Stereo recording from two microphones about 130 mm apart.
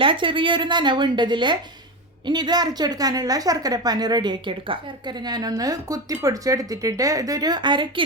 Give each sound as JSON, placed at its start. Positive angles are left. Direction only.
{"t": 0.0, "sound": "a woman's voice", "side_deg": -40}